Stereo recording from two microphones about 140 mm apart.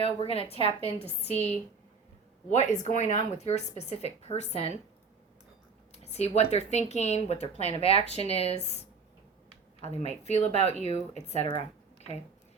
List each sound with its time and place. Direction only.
0.0 s speech: 45° left (ahead or behind)
2.5 s speech: 60° left (ahead or behind)
5.9 s speech: 50° left (ahead or behind)
9.8 s speech: 50° left (ahead or behind)